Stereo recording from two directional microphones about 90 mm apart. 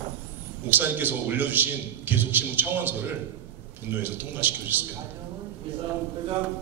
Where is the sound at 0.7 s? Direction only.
20° right (ahead or behind).